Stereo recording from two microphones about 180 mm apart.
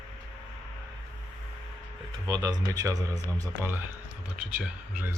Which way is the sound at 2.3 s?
20° right (ahead or behind).